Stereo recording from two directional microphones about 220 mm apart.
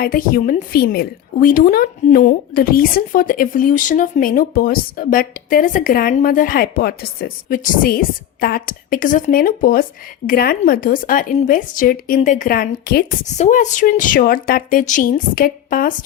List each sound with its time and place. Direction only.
0.0 s a woman's voice: 40° left (ahead or behind)
13.2 s a woman's voice: 30° left (ahead or behind)